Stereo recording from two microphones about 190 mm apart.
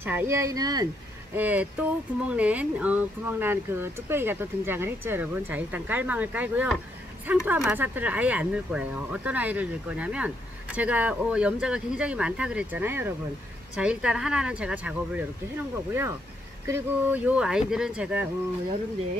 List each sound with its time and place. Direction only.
0.0 s speech: 10° right (ahead or behind)
1.3 s speech: 10° right (ahead or behind)